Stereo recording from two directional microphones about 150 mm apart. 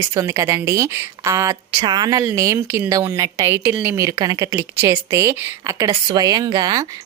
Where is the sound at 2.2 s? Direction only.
15° right (ahead or behind).